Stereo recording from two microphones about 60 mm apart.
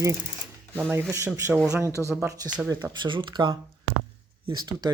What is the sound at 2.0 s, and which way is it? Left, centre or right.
Speech, centre.